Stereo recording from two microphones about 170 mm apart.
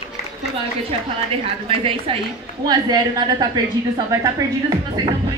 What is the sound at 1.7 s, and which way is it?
A woman's voice, 30° right (ahead or behind).